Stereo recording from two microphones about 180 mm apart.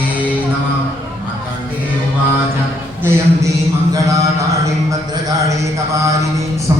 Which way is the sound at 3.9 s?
20° right (ahead or behind).